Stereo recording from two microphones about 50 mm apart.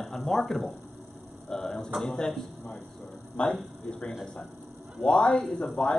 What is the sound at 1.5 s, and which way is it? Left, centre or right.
Speech, centre.